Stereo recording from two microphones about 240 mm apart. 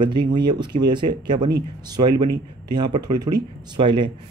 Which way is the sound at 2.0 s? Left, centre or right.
Right.